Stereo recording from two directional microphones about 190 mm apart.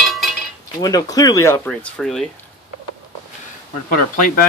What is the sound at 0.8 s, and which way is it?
Speech, 20° left (ahead or behind).